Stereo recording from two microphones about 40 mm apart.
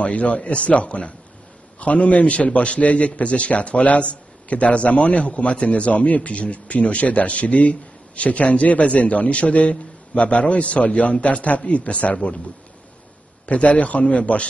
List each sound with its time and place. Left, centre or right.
0.0 s a man's voice: left
13.5 s a man's voice: left